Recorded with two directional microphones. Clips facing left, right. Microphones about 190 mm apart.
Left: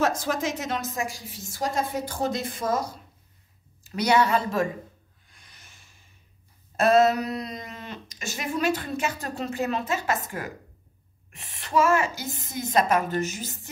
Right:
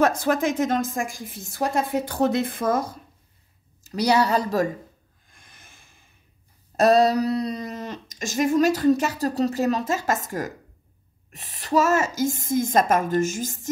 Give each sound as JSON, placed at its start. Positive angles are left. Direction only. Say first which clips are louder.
{"t": 0.0, "sound": "a woman's voice", "louder": "right 5 dB", "side_deg": -60}
{"t": 3.8, "sound": "speech", "louder": "right 1 dB", "side_deg": -35}
{"t": 5.3, "sound": "a sound", "louder": "right 3 dB", "side_deg": -50}
{"t": 6.8, "sound": "a woman's voice", "louder": "right 2 dB", "side_deg": -35}